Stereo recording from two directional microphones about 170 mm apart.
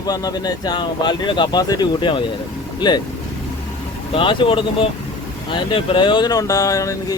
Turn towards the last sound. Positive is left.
turn(degrees=20)  # may be behind; listen again after turning